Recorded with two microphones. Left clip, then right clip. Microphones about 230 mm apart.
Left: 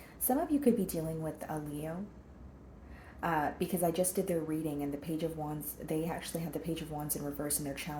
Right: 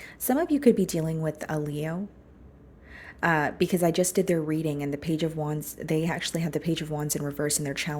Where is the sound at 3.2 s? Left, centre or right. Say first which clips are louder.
Right 8 dB; right.